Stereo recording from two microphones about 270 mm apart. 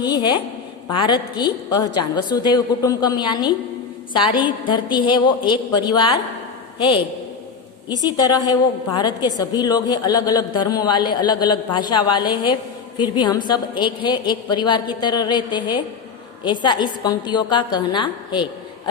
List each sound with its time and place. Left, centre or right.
0.0 s a woman's voice: centre
8.0 s a woman's voice: centre